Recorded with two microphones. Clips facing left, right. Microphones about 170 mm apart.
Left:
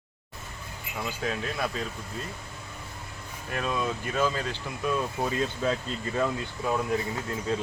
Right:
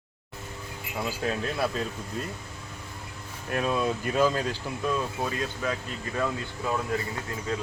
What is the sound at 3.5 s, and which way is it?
Speech, 10° right (ahead or behind).